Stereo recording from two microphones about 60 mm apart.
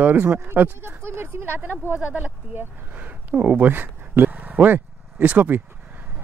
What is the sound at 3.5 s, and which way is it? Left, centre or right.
Speech, right.